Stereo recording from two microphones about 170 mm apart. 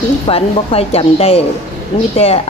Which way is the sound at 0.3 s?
35° left (ahead or behind).